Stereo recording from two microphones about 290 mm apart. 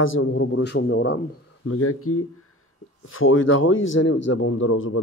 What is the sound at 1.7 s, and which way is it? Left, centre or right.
A man's voice, left.